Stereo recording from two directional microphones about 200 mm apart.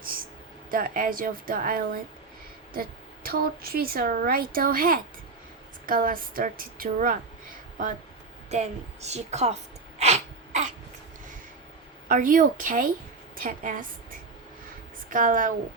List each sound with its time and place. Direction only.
0.7 s speech: 45° right (ahead or behind)
3.2 s speech: 50° right (ahead or behind)
8.4 s a woman's voice: 35° right (ahead or behind)
10.0 s sneeze: 35° right (ahead or behind)
12.0 s speech: 45° right (ahead or behind)
15.1 s a woman's voice: 40° right (ahead or behind)